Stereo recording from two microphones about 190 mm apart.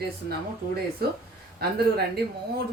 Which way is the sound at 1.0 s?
55° right (ahead or behind).